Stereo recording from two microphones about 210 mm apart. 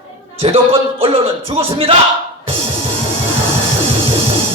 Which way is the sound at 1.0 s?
25° right (ahead or behind).